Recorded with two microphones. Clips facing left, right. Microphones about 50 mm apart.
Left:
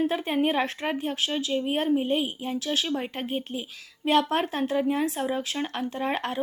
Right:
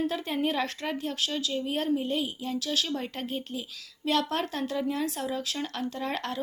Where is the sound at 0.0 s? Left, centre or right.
Left.